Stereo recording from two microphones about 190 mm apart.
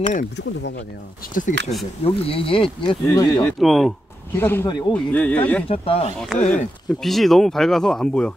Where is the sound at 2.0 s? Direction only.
30° left (ahead or behind).